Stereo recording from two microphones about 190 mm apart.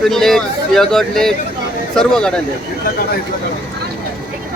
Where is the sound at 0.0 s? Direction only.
Centre (ahead or behind).